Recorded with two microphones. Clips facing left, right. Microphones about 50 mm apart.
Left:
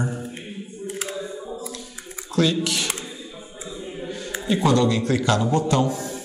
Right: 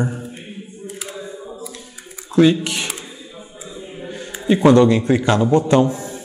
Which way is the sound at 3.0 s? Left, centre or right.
Centre.